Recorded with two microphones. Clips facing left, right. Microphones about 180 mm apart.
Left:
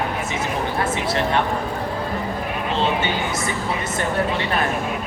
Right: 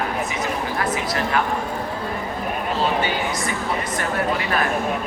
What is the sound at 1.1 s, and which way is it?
Speech, 30° left (ahead or behind).